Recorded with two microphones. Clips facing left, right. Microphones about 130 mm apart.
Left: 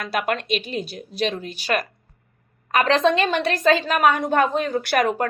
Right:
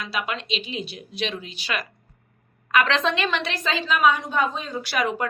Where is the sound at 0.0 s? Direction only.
50° left (ahead or behind).